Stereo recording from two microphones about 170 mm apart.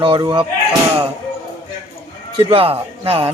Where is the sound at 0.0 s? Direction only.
30° right (ahead or behind).